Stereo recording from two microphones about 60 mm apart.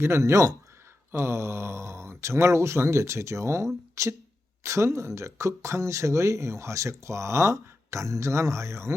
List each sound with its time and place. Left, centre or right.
0.0 s speech: right
1.2 s speech: right